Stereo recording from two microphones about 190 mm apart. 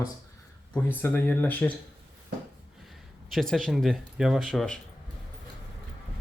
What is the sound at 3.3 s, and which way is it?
Speech, centre (ahead or behind).